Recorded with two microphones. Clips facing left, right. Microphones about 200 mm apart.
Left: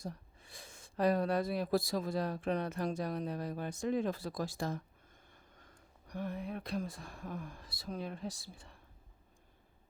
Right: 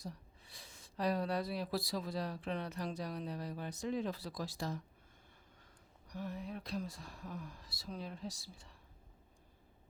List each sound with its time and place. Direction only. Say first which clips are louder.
0.0 s speech: left 4 dB; 50° left (ahead or behind)